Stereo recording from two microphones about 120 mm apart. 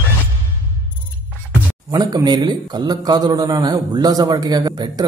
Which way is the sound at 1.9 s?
30° right (ahead or behind).